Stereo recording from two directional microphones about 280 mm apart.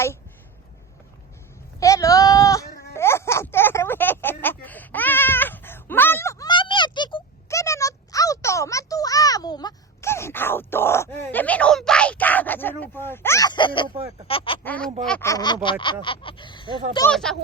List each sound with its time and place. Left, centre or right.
1.8 s a sound: centre
14.3 s speech: centre
14.6 s speech: centre
17.1 s speech: centre